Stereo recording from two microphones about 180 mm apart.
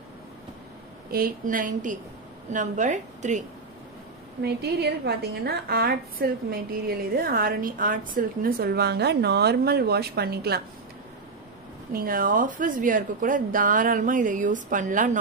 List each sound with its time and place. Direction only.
1.1 s a woman's voice: 50° right (ahead or behind)
4.4 s a woman's voice: 65° right (ahead or behind)
11.9 s a woman's voice: 55° right (ahead or behind)